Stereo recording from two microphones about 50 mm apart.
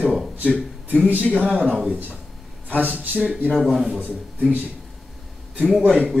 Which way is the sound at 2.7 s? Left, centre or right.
Right.